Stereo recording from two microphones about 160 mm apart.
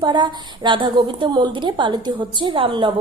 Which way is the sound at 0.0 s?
30° right (ahead or behind).